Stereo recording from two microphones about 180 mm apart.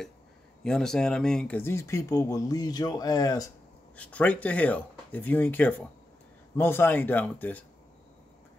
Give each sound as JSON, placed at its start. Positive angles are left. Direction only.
{"t": 0.7, "sound": "speech", "side_deg": 5}
{"t": 3.9, "sound": "speech", "side_deg": 10}